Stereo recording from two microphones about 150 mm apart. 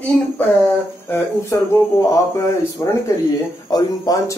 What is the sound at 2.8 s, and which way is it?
Speech, 20° left (ahead or behind).